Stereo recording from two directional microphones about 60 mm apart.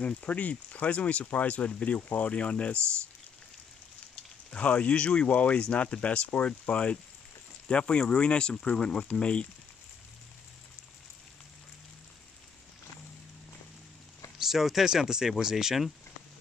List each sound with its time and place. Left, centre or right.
0.0 s speech: left
4.1 s speech: centre
14.4 s speech: centre